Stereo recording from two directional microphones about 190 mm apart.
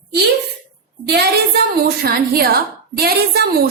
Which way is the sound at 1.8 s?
55° right (ahead or behind).